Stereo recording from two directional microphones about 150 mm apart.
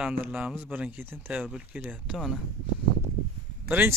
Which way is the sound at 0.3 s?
5° right (ahead or behind).